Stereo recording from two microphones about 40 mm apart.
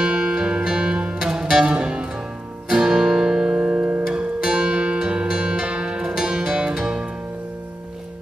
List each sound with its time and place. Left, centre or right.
0.0 s music: centre